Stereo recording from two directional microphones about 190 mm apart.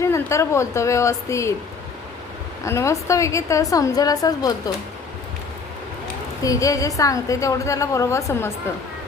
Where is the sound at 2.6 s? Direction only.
15° left (ahead or behind).